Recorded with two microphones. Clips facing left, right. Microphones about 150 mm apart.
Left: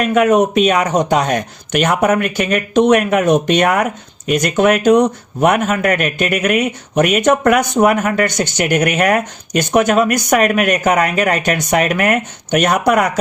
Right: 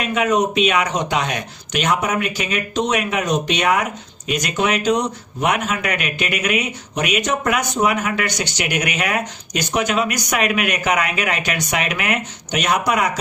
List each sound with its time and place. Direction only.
0.0 s a man's voice: 50° left (ahead or behind)